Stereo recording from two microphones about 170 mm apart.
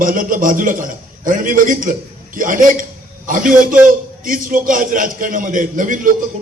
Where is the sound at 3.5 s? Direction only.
5° right (ahead or behind).